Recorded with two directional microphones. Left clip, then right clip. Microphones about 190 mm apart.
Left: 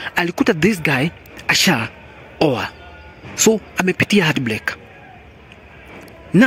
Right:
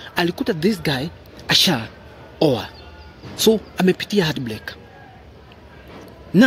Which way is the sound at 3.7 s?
15° left (ahead or behind).